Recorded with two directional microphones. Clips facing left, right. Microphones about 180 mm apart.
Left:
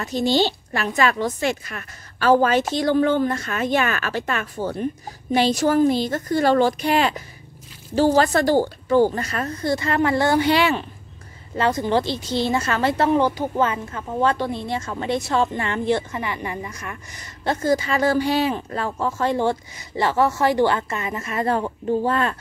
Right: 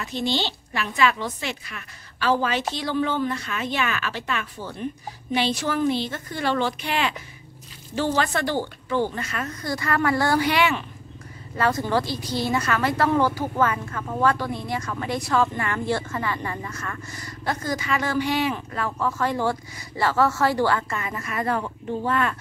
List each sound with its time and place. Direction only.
0.0 s a woman's voice: 40° left (ahead or behind)
11.5 s speech: 20° left (ahead or behind)
17.5 s speech: 30° left (ahead or behind)